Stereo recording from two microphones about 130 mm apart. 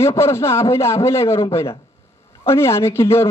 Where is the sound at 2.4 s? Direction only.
20° left (ahead or behind).